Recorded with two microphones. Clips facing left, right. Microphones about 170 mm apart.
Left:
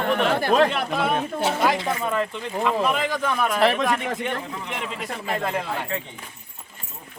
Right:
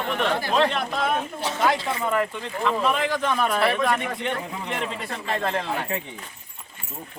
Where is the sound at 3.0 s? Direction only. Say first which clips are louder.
Even; 5° left (ahead or behind).